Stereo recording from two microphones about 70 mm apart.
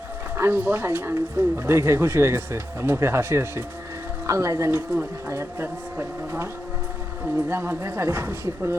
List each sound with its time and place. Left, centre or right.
0.3 s speech: right